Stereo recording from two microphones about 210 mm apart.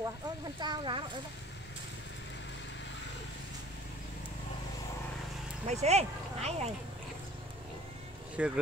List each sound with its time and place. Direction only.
0.6 s speech: 20° right (ahead or behind)
5.7 s speech: 30° right (ahead or behind)
8.4 s speech: 5° right (ahead or behind)